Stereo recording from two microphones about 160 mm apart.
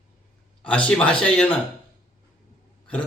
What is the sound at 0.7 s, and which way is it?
Speech, 5° left (ahead or behind).